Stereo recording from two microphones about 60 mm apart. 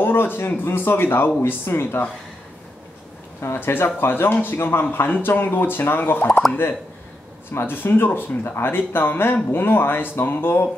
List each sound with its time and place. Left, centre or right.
0.0 s speech: left
3.3 s speech: left
7.5 s speech: left